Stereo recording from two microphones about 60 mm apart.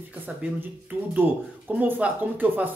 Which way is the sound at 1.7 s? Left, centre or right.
Right.